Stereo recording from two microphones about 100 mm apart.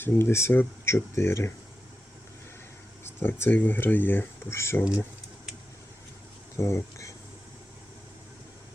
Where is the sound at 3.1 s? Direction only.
25° left (ahead or behind).